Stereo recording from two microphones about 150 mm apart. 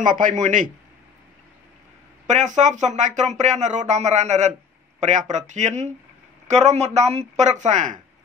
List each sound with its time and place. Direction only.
0.0 s speech: 60° right (ahead or behind)
2.2 s speech: 55° right (ahead or behind)